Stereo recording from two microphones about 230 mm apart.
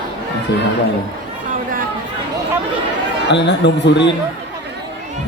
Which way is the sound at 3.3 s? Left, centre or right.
Left.